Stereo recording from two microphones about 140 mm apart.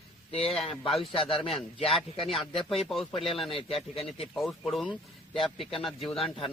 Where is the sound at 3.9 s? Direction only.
45° left (ahead or behind).